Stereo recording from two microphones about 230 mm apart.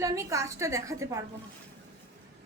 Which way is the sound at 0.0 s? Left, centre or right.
Centre.